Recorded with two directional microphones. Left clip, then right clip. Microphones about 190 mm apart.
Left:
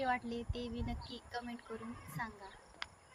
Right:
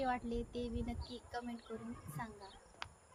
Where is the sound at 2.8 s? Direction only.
Centre (ahead or behind).